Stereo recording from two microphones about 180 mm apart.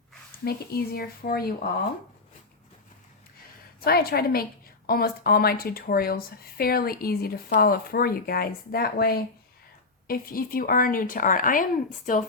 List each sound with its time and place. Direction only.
0.4 s a woman's voice: 60° left (ahead or behind)
3.8 s a woman's voice: 60° left (ahead or behind)